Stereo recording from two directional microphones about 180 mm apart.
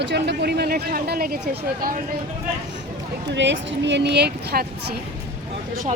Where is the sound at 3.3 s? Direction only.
80° right; by 5.0 s 60° right (ahead or behind).